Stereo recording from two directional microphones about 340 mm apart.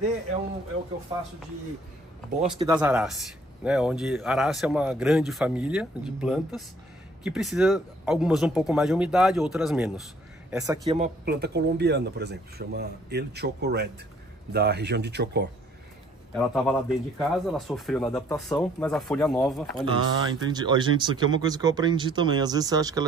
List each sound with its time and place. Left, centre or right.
2.4 s speech: centre
10.9 s speech: right
16.3 s speech: centre
19.8 s speech: centre